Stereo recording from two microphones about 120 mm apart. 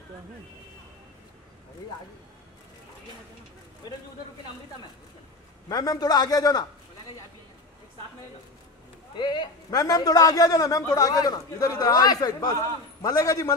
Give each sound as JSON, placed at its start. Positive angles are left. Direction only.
{"t": 5.7, "sound": "a man's voice", "side_deg": 35}
{"t": 9.1, "sound": "a man's voice", "side_deg": 40}